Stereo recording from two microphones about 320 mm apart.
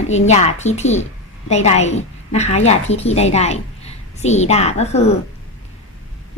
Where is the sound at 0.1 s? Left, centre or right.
Left.